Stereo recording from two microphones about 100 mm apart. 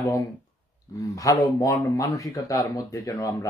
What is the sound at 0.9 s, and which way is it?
Speech, 35° left (ahead or behind).